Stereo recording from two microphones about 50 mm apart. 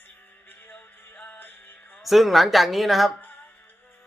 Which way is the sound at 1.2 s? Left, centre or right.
Left.